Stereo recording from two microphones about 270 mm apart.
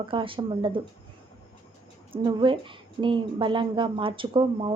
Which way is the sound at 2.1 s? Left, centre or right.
Centre.